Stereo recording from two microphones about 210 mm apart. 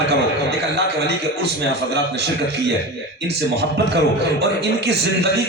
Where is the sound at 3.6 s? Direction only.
50° right (ahead or behind).